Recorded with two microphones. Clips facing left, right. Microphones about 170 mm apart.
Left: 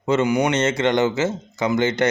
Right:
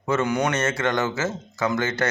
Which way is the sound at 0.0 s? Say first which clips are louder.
Left 4 dB; 20° left (ahead or behind).